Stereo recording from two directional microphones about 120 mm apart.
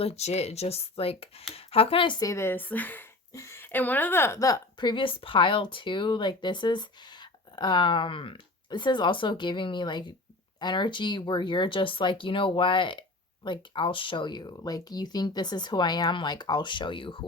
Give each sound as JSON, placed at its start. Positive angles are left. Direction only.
{"t": 0.0, "sound": "speech", "side_deg": 60}
{"t": 2.2, "sound": "a woman's voice", "side_deg": 20}